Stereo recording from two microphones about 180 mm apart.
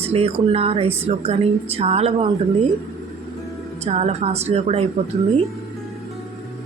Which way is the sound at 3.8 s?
40° right (ahead or behind).